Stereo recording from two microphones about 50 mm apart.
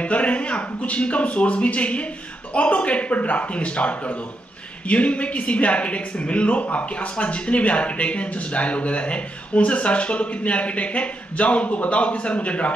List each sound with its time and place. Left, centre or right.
0.0 s a woman's voice: left